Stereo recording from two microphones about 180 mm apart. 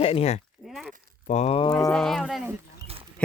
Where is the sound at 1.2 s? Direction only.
40° left (ahead or behind).